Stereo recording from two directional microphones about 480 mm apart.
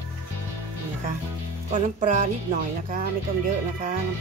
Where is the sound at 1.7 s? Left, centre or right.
Centre.